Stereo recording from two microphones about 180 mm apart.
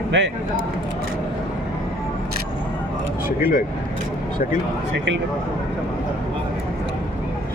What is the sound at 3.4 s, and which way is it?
Speech, 55° left (ahead or behind).